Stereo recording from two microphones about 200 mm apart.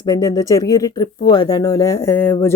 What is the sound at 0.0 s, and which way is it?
Speech, 20° left (ahead or behind).